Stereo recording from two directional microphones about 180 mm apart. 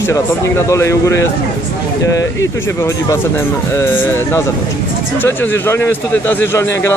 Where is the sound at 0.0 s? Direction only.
15° left (ahead or behind).